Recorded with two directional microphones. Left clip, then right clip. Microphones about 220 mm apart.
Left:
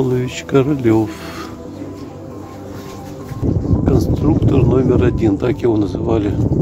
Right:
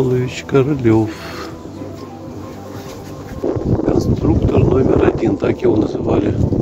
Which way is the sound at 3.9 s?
10° left (ahead or behind).